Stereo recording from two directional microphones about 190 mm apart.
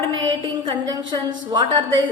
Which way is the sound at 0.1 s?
20° right (ahead or behind).